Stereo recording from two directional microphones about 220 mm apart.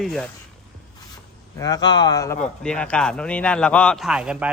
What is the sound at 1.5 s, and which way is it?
A man's voice, 15° left (ahead or behind).